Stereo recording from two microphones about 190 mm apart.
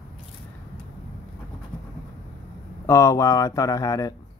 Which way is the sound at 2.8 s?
15° left (ahead or behind).